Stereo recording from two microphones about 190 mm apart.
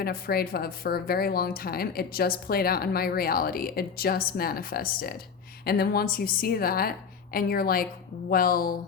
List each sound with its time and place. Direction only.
0.0 s speech: 55° left (ahead or behind)